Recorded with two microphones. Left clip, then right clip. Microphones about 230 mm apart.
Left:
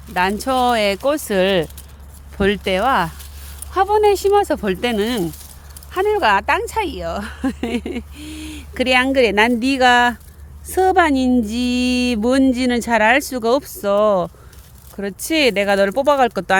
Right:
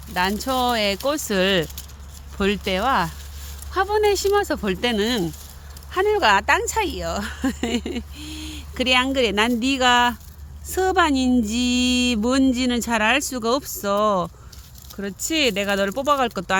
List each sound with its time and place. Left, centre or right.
0.1 s speech: left
14.9 s speech: left